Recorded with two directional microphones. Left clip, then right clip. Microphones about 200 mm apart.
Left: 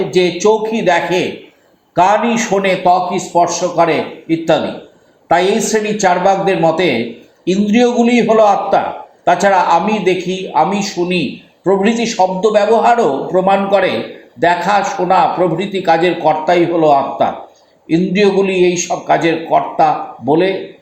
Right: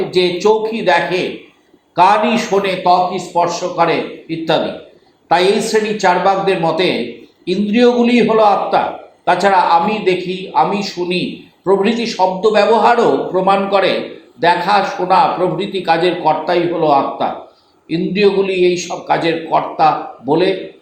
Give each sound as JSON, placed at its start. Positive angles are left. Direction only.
{"t": 0.1, "sound": "a man's voice", "side_deg": 40}